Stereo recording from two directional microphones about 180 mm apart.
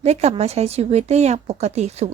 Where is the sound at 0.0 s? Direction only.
35° right (ahead or behind).